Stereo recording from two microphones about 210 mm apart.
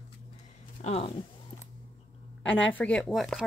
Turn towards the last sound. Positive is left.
turn(degrees=0)  # may be behind; listen again after turning